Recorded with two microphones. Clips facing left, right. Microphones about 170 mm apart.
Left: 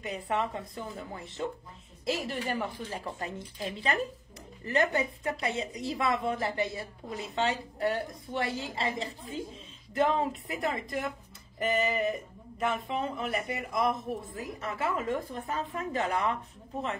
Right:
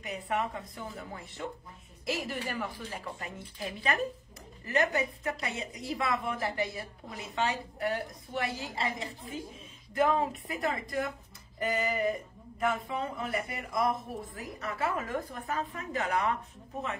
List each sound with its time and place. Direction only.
0.0 s speech: 30° left (ahead or behind)